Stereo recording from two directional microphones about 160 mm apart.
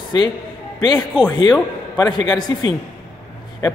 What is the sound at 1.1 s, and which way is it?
A man's voice, 30° left (ahead or behind).